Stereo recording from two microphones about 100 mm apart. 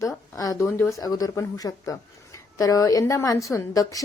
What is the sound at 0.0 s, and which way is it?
Speech, 35° left (ahead or behind).